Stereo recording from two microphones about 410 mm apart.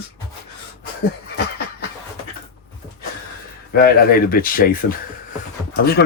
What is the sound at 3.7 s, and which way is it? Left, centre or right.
Speech, left.